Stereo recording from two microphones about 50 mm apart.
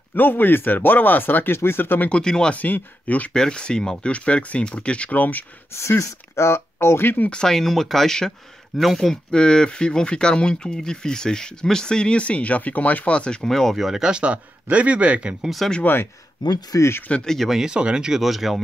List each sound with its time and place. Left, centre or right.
0.1 s speech: left
2.0 s speech: centre
2.5 s speech: left
3.3 s speech: centre
4.1 s speech: left
5.7 s speech: left
7.4 s speech: centre
13.5 s speech: centre
14.1 s speech: right
15.8 s speech: left
17.1 s speech: centre
17.6 s speech: centre